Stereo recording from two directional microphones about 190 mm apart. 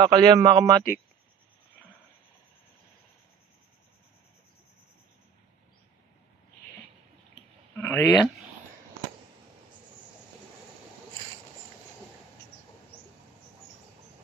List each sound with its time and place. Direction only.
0.0 s speech: 20° right (ahead or behind)
7.8 s speech: 5° left (ahead or behind)